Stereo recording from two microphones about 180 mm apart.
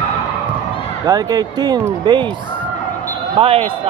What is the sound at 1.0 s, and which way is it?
Speech, 20° right (ahead or behind).